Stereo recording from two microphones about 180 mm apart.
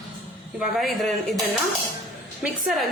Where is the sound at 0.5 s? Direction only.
Centre (ahead or behind).